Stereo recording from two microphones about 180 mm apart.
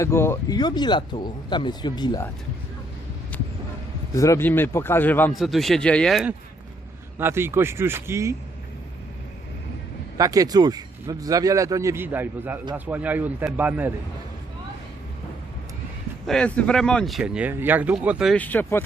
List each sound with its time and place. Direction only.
0.0 s speech: 15° left (ahead or behind)
4.1 s speech: 15° left (ahead or behind)
5.3 s speech: centre (ahead or behind)
7.2 s speech: 15° right (ahead or behind)
10.2 s speech: 20° right (ahead or behind)
16.2 s speech: 5° left (ahead or behind)
18.3 s speech: 10° left (ahead or behind)